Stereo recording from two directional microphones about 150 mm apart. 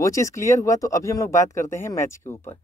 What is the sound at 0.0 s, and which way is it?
Speech, 20° left (ahead or behind).